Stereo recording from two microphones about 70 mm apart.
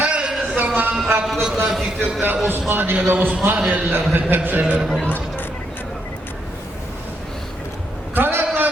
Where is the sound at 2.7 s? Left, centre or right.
Right.